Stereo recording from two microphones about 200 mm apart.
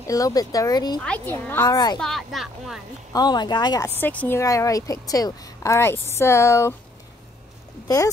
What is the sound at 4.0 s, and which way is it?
A woman's voice, 10° left (ahead or behind).